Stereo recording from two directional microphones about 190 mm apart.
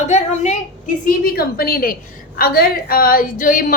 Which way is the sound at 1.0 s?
55° left (ahead or behind).